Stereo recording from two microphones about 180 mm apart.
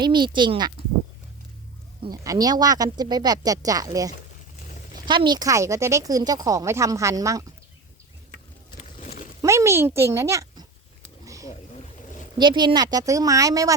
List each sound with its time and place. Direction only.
0.0 s speech: 25° right (ahead or behind)
2.0 s speech: 20° right (ahead or behind)
8.8 s a sound: 40° left (ahead or behind)
9.4 s a child's voice: 15° right (ahead or behind)
12.4 s speech: 25° right (ahead or behind)